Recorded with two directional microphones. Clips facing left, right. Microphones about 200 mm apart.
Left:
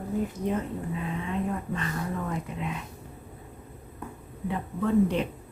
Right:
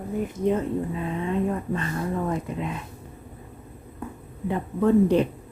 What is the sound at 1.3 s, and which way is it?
Speech, 40° right (ahead or behind).